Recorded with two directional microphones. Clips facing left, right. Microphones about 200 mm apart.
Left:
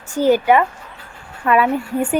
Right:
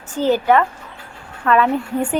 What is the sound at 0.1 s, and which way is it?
A woman's voice, 10° left (ahead or behind).